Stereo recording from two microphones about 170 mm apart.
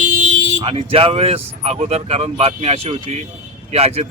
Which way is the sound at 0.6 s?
35° right (ahead or behind).